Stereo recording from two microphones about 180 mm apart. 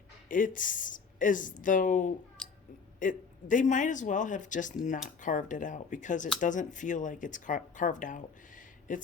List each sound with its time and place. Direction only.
0.3 s speech: 45° left (ahead or behind)